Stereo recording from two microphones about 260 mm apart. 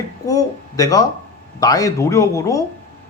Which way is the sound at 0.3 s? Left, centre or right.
Centre.